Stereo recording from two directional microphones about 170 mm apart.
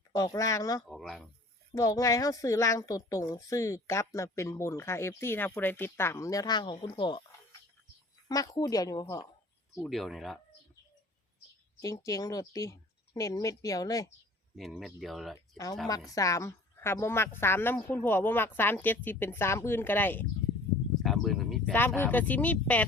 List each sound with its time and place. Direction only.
0.1 s a woman's voice: 20° left (ahead or behind)
0.9 s speech: centre (ahead or behind)
1.7 s a woman's voice: 20° left (ahead or behind)
8.3 s a woman's voice: 20° left (ahead or behind)
9.7 s speech: centre (ahead or behind)
11.8 s a woman's voice: 20° left (ahead or behind)
14.5 s speech: centre (ahead or behind)
15.9 s a woman's voice: 20° left (ahead or behind)
21.0 s a sound: centre (ahead or behind)
21.8 s a woman's voice: 10° left (ahead or behind)